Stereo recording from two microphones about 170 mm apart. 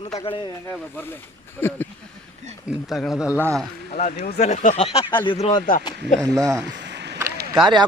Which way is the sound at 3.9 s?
60° left (ahead or behind).